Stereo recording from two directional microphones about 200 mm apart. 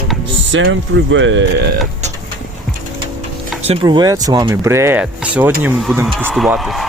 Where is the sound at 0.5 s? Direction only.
70° right (ahead or behind).